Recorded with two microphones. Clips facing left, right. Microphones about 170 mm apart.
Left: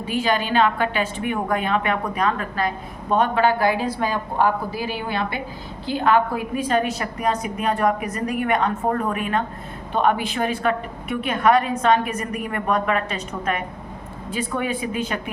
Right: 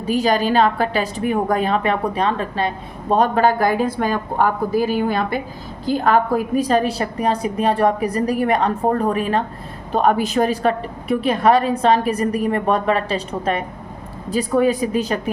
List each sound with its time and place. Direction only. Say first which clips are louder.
0.0 s a woman's voice: right 5 dB; 40° right (ahead or behind)